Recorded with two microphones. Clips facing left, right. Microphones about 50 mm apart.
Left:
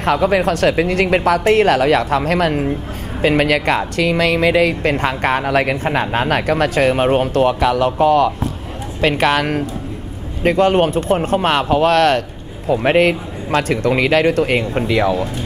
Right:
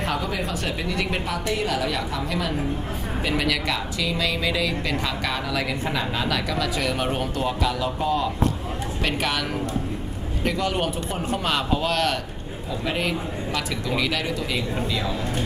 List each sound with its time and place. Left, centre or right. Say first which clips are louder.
0.0 s speech: left 12 dB; left